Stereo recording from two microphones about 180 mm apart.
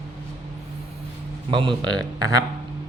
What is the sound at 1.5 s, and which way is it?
Speech, 25° right (ahead or behind).